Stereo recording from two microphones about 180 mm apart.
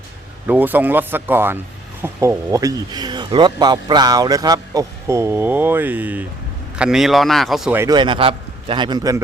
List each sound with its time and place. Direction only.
0.4 s speech: 10° right (ahead or behind)
7.8 s a man's voice: 25° right (ahead or behind)